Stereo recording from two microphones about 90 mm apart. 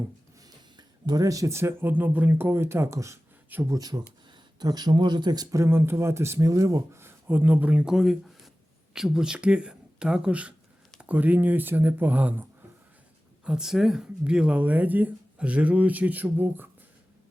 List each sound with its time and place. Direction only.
0.4 s speech: 50° right (ahead or behind); by 3.2 s 35° right (ahead or behind)
3.7 s speech: 45° right (ahead or behind)
5.5 s speech: 25° right (ahead or behind)
13.4 s speech: 10° right (ahead or behind)